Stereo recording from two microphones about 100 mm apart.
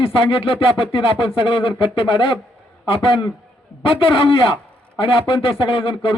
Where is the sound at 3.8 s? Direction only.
65° left (ahead or behind).